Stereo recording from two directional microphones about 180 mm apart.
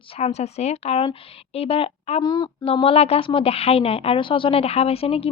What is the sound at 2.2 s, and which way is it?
A woman's voice, 20° left (ahead or behind).